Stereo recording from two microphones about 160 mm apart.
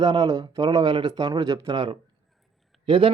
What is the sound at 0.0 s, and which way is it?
A man's voice, 30° right (ahead or behind).